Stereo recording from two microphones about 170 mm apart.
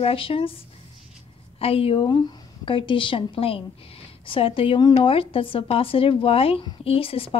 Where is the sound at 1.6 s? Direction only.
35° left (ahead or behind).